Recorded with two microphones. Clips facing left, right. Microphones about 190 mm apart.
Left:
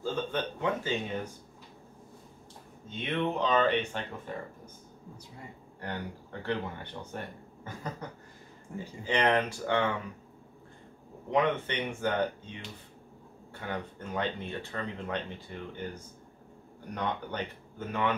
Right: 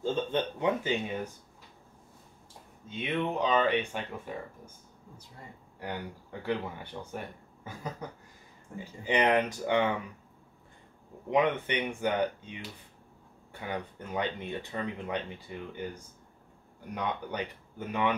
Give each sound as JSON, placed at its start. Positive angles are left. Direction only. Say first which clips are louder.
{"t": 0.0, "sound": "speech", "louder": "right 2 dB", "side_deg": -20}
{"t": 2.9, "sound": "speech", "louder": "even", "side_deg": -10}
{"t": 5.8, "sound": "speech", "louder": "even", "side_deg": -10}
{"t": 11.2, "sound": "speech", "louder": "right 1 dB", "side_deg": -15}